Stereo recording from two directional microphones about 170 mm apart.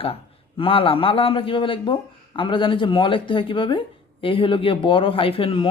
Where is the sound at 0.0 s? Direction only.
35° left (ahead or behind).